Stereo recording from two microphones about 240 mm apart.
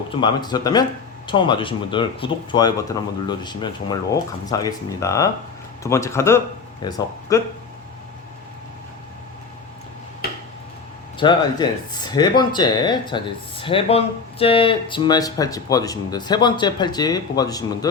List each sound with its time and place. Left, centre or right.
0.1 s speech: centre
11.2 s speech: centre